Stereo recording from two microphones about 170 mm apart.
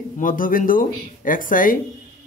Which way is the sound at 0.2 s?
55° left (ahead or behind).